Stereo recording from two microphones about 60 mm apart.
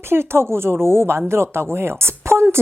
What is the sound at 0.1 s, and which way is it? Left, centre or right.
A woman's voice, right.